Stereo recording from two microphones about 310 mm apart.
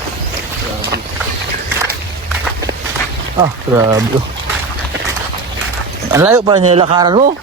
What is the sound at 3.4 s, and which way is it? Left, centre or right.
Speech, centre.